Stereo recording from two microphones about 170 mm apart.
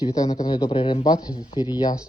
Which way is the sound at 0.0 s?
20° left (ahead or behind).